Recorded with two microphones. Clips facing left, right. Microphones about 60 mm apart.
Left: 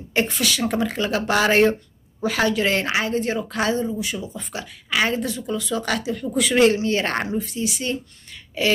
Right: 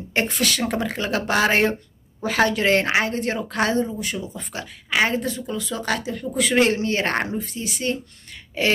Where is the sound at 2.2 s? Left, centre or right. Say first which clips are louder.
Right 1 dB; right.